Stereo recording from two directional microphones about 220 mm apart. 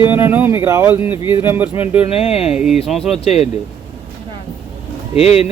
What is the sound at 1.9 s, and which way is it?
Speech, 25° left (ahead or behind).